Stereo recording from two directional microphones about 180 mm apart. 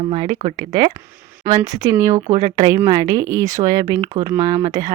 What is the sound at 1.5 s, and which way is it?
Speech, 20° right (ahead or behind).